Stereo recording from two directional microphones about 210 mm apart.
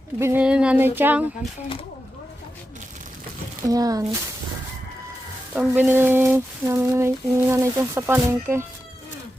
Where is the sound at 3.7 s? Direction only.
15° right (ahead or behind).